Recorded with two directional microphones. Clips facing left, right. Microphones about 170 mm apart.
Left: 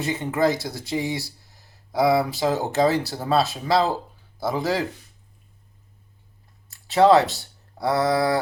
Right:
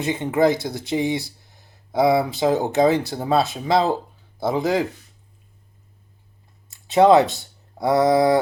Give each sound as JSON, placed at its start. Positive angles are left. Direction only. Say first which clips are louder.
{"t": 0.0, "sound": "speech", "louder": "right 3 dB", "side_deg": -20}
{"t": 6.7, "sound": "speech", "louder": "right 2 dB", "side_deg": -20}